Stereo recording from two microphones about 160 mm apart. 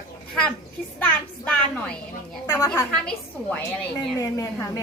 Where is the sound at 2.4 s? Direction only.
20° left (ahead or behind).